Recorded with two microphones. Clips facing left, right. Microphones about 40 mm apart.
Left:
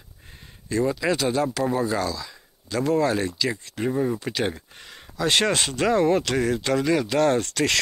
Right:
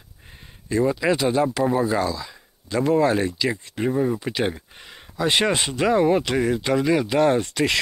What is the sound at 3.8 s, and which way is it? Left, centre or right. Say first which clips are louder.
Speech: right 2 dB; centre.